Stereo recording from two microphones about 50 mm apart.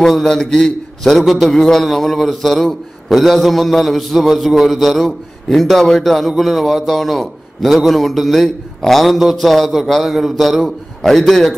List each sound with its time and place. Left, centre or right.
0.0 s a man's voice: centre